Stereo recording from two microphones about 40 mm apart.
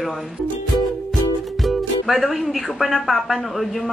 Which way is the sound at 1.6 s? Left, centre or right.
Centre.